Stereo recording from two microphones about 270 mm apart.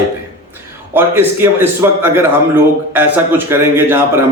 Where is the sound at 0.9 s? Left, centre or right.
Centre.